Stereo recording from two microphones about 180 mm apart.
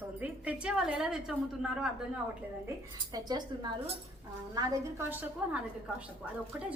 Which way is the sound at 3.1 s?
20° right (ahead or behind).